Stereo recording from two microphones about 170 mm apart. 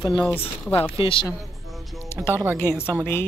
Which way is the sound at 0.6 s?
10° left (ahead or behind).